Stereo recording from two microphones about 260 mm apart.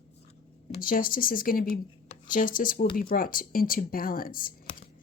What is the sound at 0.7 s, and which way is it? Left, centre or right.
Speech, left.